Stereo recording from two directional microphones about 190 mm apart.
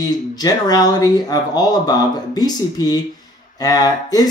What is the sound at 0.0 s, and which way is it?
Speech, 20° left (ahead or behind).